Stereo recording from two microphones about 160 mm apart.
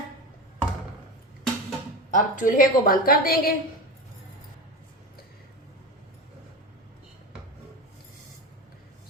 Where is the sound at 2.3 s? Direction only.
55° left (ahead or behind).